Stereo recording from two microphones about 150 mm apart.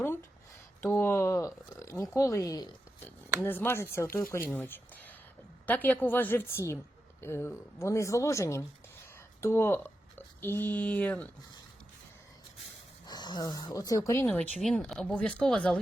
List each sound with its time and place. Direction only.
0.8 s a woman's voice: 15° left (ahead or behind)
13.1 s speech: 30° left (ahead or behind)
14.3 s speech: 5° left (ahead or behind)